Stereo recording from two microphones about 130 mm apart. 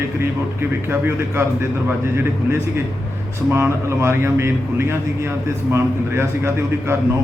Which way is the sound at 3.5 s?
20° right (ahead or behind).